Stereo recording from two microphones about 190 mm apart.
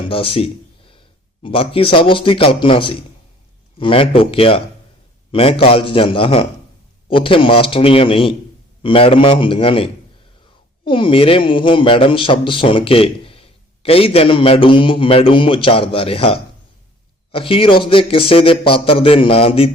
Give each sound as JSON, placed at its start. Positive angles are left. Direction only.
{"t": 0.0, "sound": "speech", "side_deg": 30}